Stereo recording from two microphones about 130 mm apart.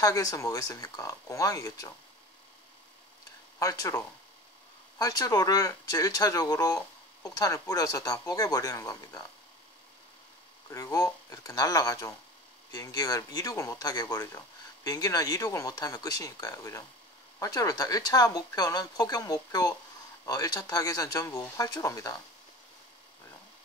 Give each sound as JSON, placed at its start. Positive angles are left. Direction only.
{"t": 0.0, "sound": "speech", "side_deg": 25}
{"t": 3.5, "sound": "speech", "side_deg": 25}
{"t": 10.7, "sound": "speech", "side_deg": 25}